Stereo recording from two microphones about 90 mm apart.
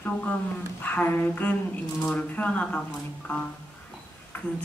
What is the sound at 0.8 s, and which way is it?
Speech, 20° left (ahead or behind).